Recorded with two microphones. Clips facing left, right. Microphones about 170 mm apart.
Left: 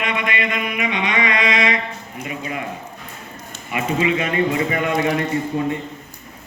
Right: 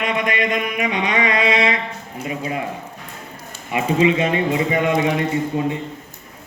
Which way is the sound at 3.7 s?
25° right (ahead or behind).